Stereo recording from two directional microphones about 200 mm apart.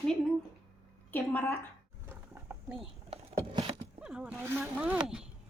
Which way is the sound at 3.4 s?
25° right (ahead or behind).